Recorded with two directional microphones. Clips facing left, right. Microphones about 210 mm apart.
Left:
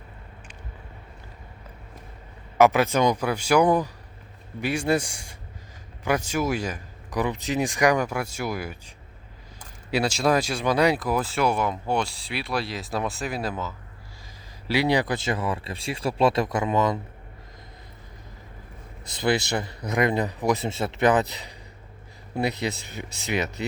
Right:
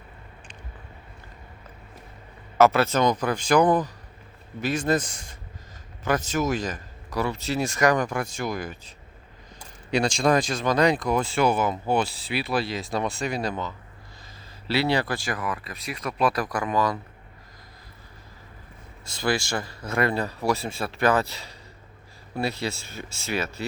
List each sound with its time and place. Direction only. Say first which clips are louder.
2.6 s speech: even; 15° left (ahead or behind)
9.9 s speech: right 1 dB; 5° left (ahead or behind)
14.7 s speech: left 1 dB; 15° left (ahead or behind)
19.0 s speech: left 2 dB; 20° left (ahead or behind)